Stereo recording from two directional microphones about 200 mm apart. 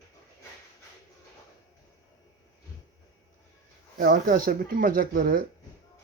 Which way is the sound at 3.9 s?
45° right (ahead or behind).